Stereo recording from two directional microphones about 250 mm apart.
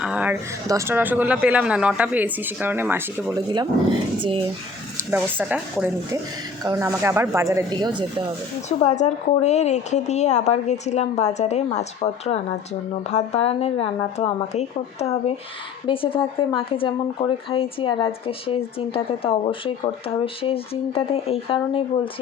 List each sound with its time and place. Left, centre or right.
0.0 s speech: centre; by 4.4 s right
5.1 s speech: centre
8.8 s speech: left